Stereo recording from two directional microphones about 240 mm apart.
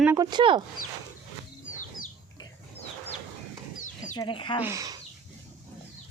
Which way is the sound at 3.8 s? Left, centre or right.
Left.